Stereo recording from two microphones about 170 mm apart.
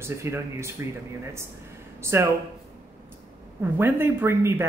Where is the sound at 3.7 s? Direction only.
15° right (ahead or behind).